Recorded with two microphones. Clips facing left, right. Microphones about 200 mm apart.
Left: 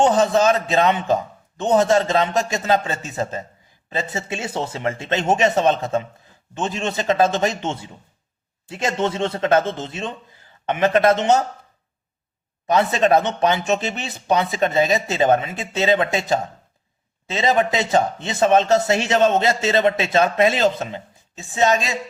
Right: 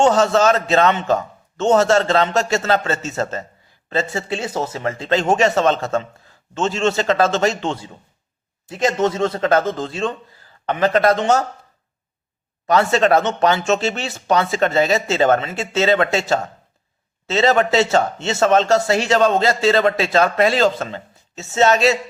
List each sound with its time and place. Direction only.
0.0 s speech: 15° left (ahead or behind)
4.4 s speech: 30° left (ahead or behind)
12.7 s speech: 15° left (ahead or behind)